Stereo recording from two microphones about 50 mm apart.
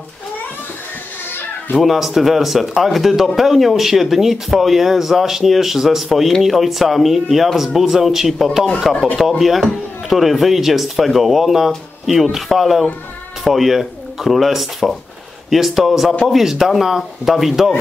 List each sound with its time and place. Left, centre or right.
1.8 s speech: centre
8.9 s speech: centre
9.4 s speech: centre